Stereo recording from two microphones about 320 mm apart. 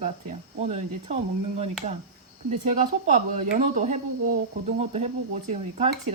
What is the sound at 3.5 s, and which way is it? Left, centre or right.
Speech, right.